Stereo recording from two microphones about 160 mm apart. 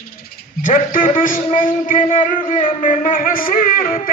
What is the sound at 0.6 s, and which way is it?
A man's voice, 55° left (ahead or behind).